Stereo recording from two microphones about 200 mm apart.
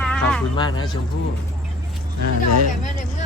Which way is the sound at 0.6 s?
20° left (ahead or behind).